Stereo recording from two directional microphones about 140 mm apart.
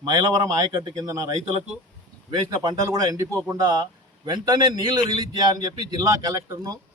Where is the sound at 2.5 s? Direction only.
25° right (ahead or behind).